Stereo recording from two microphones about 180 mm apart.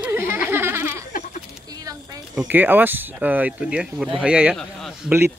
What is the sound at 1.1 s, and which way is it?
Sheep, 45° left (ahead or behind).